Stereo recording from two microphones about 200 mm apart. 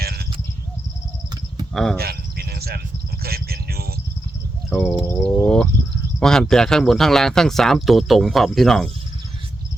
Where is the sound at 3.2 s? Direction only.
50° right (ahead or behind).